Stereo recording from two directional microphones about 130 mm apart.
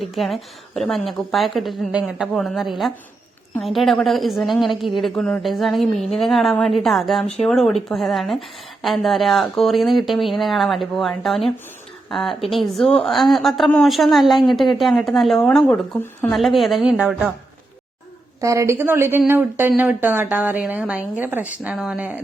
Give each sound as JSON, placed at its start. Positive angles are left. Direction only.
{"t": 0.0, "sound": "a woman's voice", "side_deg": 0}
{"t": 18.3, "sound": "a woman's voice", "side_deg": -25}